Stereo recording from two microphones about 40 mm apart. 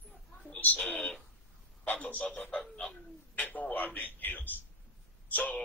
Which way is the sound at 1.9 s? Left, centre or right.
Left.